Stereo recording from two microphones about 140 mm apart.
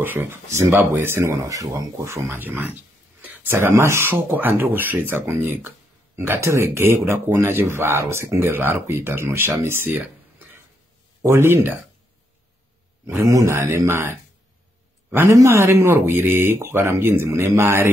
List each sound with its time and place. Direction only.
0.0 s speech: 15° right (ahead or behind)
11.2 s speech: 20° right (ahead or behind)
13.0 s a man's voice: 20° right (ahead or behind)